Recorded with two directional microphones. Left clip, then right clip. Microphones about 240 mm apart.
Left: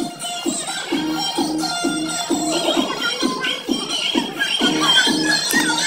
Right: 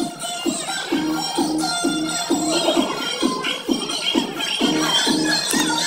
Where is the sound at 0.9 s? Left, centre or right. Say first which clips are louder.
Left 2 dB; left.